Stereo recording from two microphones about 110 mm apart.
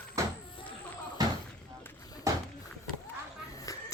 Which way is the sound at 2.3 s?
30° right (ahead or behind).